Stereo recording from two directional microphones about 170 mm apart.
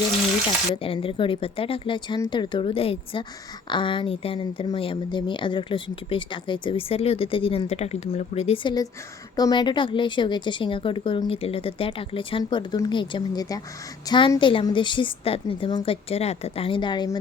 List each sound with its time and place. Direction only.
0.8 s a woman's voice: 35° left (ahead or behind)